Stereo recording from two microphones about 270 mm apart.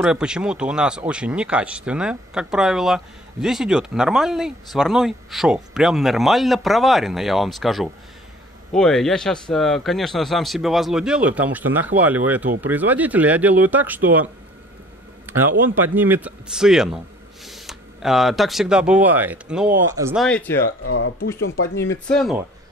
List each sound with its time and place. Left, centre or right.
0.0 s speech: centre
15.2 s a man's voice: centre
20.2 s speech: centre
20.6 s speech: left
22.0 s speech: centre